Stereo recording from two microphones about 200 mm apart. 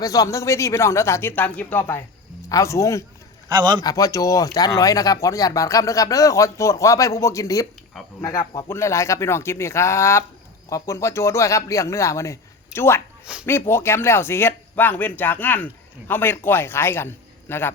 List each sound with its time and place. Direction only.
0.0 s speech: 15° left (ahead or behind)
3.5 s a man's voice: 20° right (ahead or behind)
3.8 s speech: 15° left (ahead or behind)